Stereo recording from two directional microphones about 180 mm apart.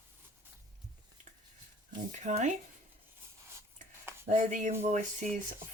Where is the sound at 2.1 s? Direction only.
40° right (ahead or behind).